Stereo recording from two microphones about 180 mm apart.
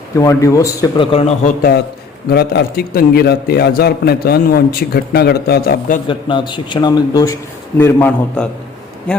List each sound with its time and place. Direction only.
0.2 s a man's voice: 20° left (ahead or behind)
1.1 s a man's voice: 35° left (ahead or behind)
2.3 s a man's voice: 65° left (ahead or behind)
6.1 s a man's voice: 25° left (ahead or behind); by 8.4 s 10° left (ahead or behind)